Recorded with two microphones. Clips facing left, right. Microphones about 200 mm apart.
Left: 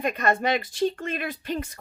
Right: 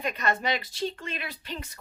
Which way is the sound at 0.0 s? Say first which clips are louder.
Left 5 dB; 50° left (ahead or behind).